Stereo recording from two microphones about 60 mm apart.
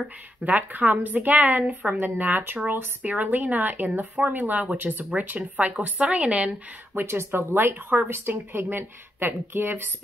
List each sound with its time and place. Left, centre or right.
0.5 s speech: right
7.0 s speech: right